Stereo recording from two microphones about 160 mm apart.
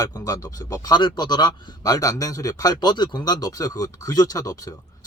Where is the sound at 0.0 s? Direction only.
25° left (ahead or behind).